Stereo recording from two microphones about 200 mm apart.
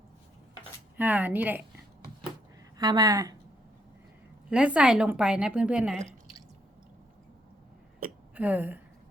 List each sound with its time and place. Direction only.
0.9 s a woman's voice: 10° right (ahead or behind)
2.7 s speech: 20° right (ahead or behind)
4.4 s a woman's voice: 5° right (ahead or behind)
8.4 s a woman's voice: 10° right (ahead or behind)